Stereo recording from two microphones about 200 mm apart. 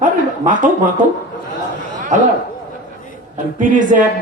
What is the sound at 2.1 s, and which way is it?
Speech, 40° right (ahead or behind).